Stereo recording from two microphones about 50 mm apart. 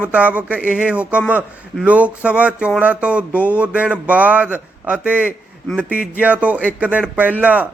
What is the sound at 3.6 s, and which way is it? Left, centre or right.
Speech, right.